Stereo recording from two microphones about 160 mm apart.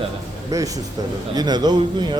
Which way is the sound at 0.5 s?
20° right (ahead or behind).